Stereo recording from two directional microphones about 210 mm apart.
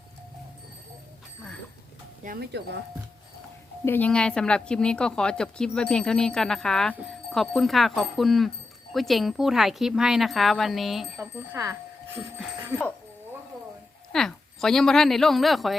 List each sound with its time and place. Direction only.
2.2 s speech: 45° right (ahead or behind)
3.8 s speech: 10° left (ahead or behind)
11.5 s music: 15° right (ahead or behind)
14.1 s a woman's voice: centre (ahead or behind)